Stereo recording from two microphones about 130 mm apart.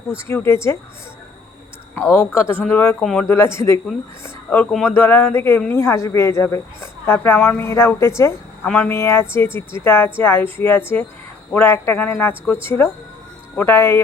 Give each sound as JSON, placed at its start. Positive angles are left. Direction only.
{"t": 0.3, "sound": "speech", "side_deg": 20}
{"t": 2.1, "sound": "speech", "side_deg": 15}
{"t": 3.0, "sound": "speech", "side_deg": 5}
{"t": 3.2, "sound": "a woman's voice", "side_deg": 20}